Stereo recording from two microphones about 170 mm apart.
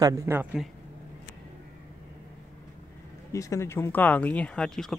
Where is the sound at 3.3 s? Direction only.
20° left (ahead or behind); by 4.9 s 5° left (ahead or behind).